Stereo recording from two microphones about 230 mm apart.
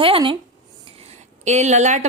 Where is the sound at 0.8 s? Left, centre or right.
Right.